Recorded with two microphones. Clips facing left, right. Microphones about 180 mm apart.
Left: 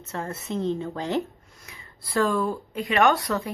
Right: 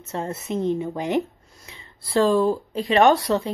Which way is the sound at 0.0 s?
20° right (ahead or behind).